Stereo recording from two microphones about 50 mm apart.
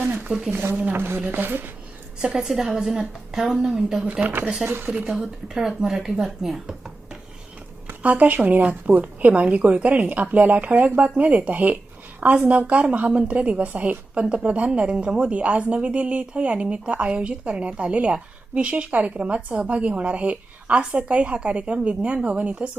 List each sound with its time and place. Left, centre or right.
0.3 s a woman's voice: centre
0.5 s speech: right
2.2 s a woman's voice: centre
4.0 s a woman's voice: right
4.6 s a woman's voice: centre
6.7 s dishes: centre
7.9 s a woman's voice: right